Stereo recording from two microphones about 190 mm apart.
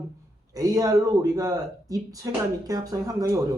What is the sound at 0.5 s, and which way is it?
Speech, 20° right (ahead or behind).